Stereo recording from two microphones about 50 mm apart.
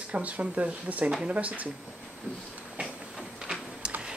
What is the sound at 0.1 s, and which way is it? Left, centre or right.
Speech, right.